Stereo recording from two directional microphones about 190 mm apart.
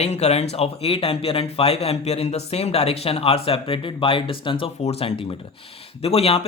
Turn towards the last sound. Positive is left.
turn(degrees=30)  # may be behind; listen again after turning